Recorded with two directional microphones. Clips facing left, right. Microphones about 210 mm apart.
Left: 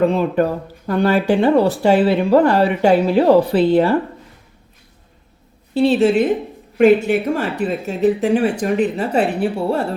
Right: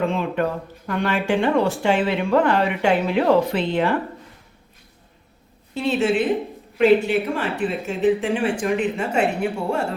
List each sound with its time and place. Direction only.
0.0 s speech: 40° left (ahead or behind)
5.7 s speech: 35° left (ahead or behind)